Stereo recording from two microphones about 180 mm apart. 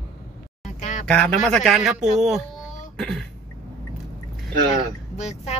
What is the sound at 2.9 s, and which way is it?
Throat clearing, 5° left (ahead or behind).